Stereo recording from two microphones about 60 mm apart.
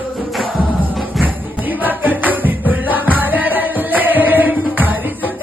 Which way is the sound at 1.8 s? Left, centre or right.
Right.